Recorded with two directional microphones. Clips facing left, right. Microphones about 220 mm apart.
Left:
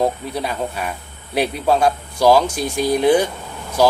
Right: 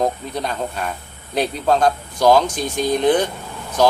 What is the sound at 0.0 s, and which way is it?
Speech, 5° left (ahead or behind).